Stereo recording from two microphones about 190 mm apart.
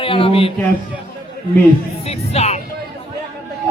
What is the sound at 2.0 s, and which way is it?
Speech, 35° left (ahead or behind).